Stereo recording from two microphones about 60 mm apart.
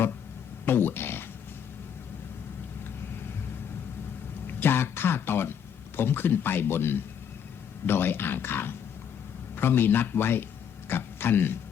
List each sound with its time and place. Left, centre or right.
0.6 s speech: left
4.4 s a sound: left
6.0 s a man's voice: left